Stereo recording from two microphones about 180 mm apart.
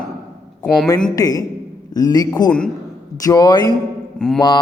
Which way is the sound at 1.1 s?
20° left (ahead or behind).